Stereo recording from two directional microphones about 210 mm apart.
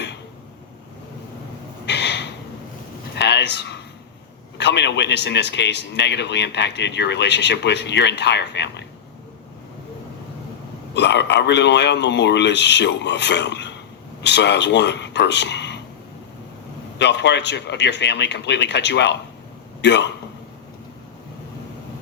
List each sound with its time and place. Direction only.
1.9 s a sound: 55° left (ahead or behind)
4.5 s a man's voice: 55° left (ahead or behind)
10.9 s a man's voice: 55° left (ahead or behind)
17.0 s a man's voice: 55° left (ahead or behind)